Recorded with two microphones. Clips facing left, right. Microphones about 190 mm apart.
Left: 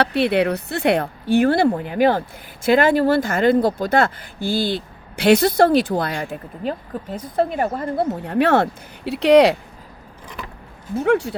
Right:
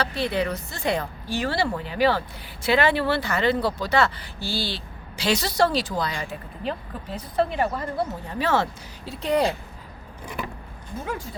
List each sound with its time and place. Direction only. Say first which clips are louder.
0.0 s speech: left 7 dB; 65° left (ahead or behind); by 9.6 s 80° left
10.9 s speech: left 14 dB; 75° left (ahead or behind)